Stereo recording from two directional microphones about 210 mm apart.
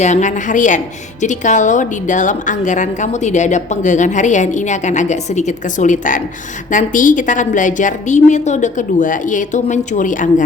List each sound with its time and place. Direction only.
0.0 s a woman's voice: 35° left (ahead or behind)